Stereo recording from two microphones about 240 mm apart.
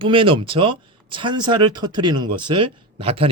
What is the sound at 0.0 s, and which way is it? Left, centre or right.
Speech, right.